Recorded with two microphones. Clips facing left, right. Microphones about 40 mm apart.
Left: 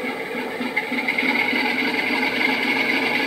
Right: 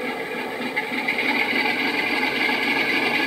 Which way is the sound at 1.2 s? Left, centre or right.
Centre.